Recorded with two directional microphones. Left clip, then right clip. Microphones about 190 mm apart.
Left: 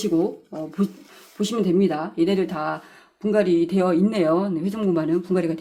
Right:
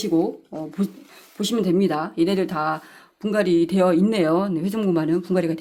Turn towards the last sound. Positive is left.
turn(degrees=-25)  # may be behind; listen again after turning